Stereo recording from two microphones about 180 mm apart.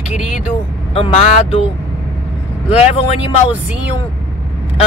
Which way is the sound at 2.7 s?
35° left (ahead or behind).